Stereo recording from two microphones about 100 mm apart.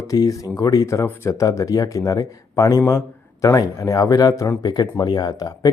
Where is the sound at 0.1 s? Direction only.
35° left (ahead or behind).